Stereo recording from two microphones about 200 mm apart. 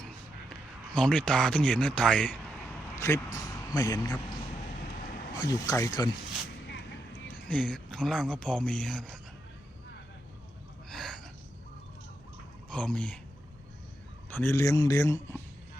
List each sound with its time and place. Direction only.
0.9 s speech: 5° left (ahead or behind)
2.9 s a sound: 15° left (ahead or behind)
3.3 s vehicle: 20° left (ahead or behind)
3.8 s a man's voice: 20° left (ahead or behind)
5.4 s speech: 15° left (ahead or behind)
7.4 s speech: 5° left (ahead or behind)
10.8 s gasp: 5° left (ahead or behind)
12.7 s speech: 5° left (ahead or behind)
14.3 s speech: 15° left (ahead or behind)